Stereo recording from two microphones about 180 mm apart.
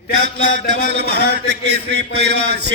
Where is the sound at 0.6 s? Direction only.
70° right (ahead or behind).